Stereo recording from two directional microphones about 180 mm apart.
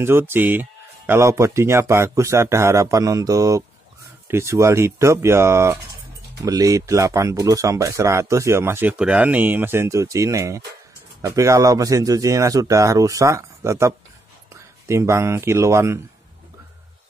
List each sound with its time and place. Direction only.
0.0 s speech: 10° right (ahead or behind)